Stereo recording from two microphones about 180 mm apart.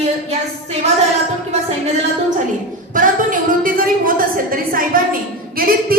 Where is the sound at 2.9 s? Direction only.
50° right (ahead or behind).